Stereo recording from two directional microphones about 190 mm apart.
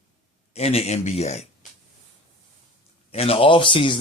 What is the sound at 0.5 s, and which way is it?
Speech, 35° left (ahead or behind).